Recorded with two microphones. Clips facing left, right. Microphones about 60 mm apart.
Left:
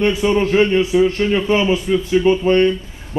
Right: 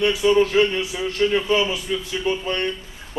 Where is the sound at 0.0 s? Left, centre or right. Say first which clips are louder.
Left 1 dB; left.